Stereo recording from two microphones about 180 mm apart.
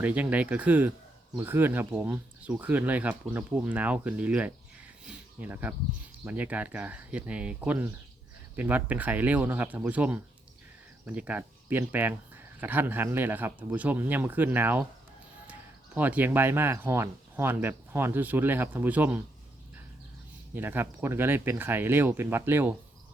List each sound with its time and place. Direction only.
0.0 s speech: 10° right (ahead or behind)
16.0 s speech: 10° right (ahead or behind)
20.5 s speech: 10° right (ahead or behind)